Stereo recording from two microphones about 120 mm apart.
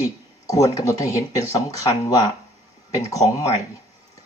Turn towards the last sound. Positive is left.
turn(degrees=30)  # may be behind; listen again after turning